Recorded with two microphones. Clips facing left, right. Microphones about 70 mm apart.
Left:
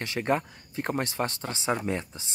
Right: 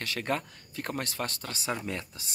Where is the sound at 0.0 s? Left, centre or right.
Left.